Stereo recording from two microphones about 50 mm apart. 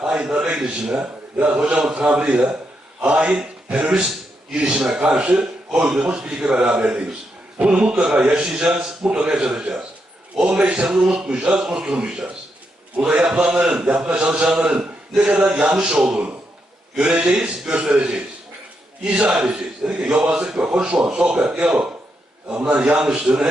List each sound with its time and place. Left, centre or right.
0.0 s a man's voice: centre
0.9 s a man's voice: right